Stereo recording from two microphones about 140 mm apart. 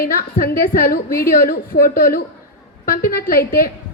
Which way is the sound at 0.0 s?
90° left.